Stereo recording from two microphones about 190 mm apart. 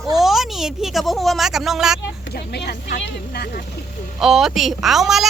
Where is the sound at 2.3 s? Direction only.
55° left (ahead or behind).